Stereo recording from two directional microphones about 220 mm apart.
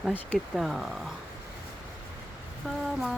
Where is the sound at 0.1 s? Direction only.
10° left (ahead or behind).